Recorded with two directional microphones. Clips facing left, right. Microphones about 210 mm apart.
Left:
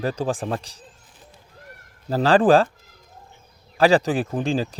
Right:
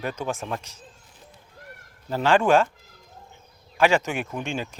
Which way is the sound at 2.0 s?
35° left (ahead or behind).